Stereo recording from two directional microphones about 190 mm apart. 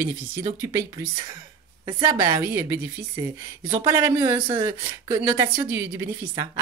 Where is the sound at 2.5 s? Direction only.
10° right (ahead or behind).